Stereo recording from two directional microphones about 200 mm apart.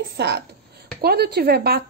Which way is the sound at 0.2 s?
55° right (ahead or behind).